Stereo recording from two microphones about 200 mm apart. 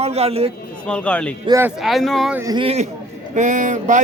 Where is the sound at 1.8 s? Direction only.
Centre (ahead or behind).